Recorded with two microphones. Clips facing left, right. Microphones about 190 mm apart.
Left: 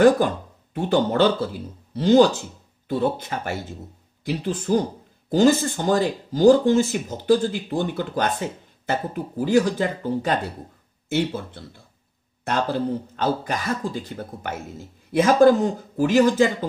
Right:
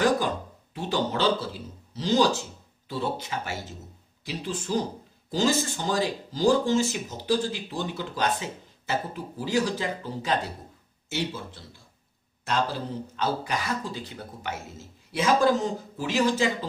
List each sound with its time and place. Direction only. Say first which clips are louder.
0.7 s speech: left 8 dB; 55° left (ahead or behind)